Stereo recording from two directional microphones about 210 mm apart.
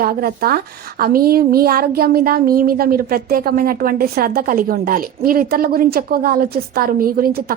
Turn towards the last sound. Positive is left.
turn(degrees=-45)  # may be behind; listen again after turning